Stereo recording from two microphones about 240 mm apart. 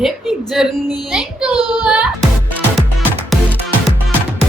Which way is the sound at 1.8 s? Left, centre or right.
Centre.